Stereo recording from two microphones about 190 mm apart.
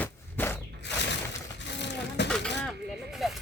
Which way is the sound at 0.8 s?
65° left (ahead or behind).